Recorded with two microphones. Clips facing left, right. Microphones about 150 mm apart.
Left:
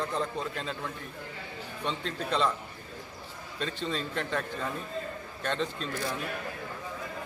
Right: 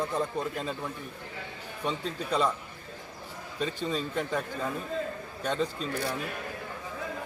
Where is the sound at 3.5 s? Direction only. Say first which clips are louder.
Right 2 dB; 5° right (ahead or behind).